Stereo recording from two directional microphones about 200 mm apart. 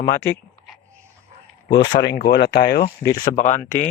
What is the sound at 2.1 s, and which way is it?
Speech, 55° left (ahead or behind).